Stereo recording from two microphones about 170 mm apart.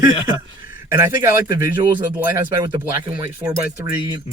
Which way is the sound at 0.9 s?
15° right (ahead or behind).